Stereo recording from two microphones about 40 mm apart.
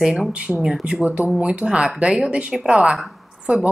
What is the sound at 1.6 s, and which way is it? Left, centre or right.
A woman's voice, centre.